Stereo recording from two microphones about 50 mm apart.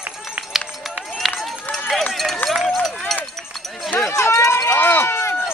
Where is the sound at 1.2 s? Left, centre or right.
Centre.